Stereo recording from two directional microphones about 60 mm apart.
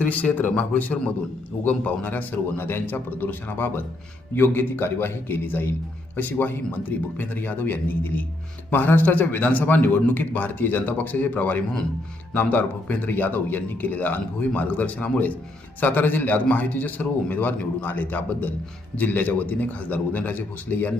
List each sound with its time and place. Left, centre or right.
0.0 s a man's voice: left